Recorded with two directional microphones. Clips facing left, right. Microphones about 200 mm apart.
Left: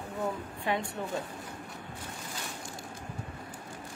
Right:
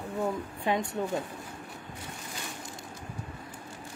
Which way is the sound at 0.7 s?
20° right (ahead or behind).